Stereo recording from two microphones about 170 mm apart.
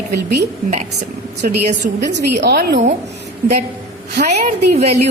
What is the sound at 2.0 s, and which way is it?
Speech, 80° right.